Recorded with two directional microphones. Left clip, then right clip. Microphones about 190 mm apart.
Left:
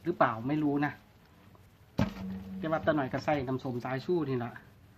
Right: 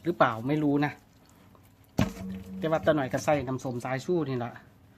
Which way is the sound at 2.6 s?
45° right (ahead or behind).